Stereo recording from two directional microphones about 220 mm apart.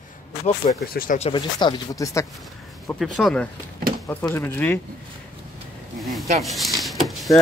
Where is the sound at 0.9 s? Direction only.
40° left (ahead or behind).